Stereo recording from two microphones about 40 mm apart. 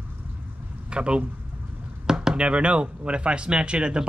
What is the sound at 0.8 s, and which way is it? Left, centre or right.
Speech, right.